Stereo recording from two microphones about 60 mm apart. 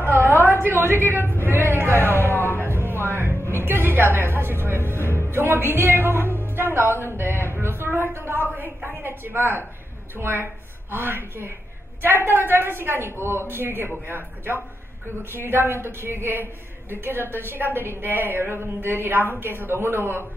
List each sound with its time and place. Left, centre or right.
0.0 s a sound: right
2.3 s music: left
2.7 s a sound: left
3.0 s music: right
3.5 s a woman's voice: right
6.3 s music: right
7.5 s a woman's voice: right